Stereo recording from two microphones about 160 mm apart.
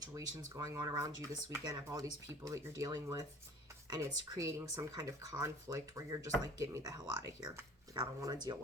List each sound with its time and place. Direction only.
0.0 s speech: 20° right (ahead or behind)